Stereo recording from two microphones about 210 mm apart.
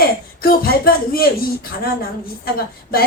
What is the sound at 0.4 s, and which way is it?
Speech, 45° left (ahead or behind).